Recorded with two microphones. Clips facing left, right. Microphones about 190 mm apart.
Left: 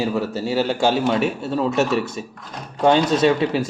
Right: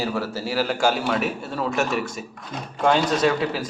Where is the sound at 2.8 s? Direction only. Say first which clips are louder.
Left 4 dB; 25° left (ahead or behind).